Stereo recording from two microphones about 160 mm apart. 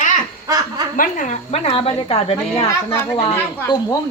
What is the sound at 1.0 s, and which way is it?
Speech, 50° left (ahead or behind).